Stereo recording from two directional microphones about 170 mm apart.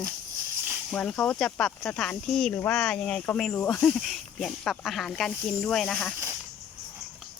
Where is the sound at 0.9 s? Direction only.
5° left (ahead or behind).